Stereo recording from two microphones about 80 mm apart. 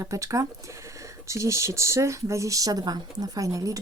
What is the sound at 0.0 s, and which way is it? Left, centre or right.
Speech, right.